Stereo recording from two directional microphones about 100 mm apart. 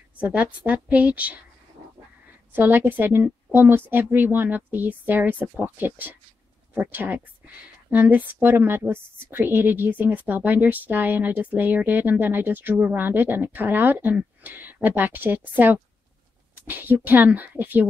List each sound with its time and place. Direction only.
0.2 s a woman's voice: 15° right (ahead or behind)
2.5 s a woman's voice: 20° right (ahead or behind)